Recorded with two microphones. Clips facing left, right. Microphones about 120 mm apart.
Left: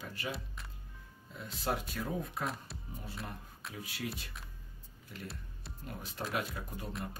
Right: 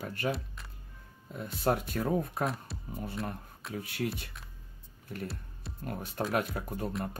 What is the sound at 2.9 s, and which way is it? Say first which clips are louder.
Speech: right 8 dB; 55° right (ahead or behind).